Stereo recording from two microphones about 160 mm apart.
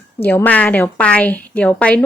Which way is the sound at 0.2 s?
10° left (ahead or behind).